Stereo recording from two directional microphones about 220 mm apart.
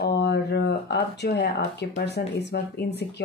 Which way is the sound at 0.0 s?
50° left (ahead or behind).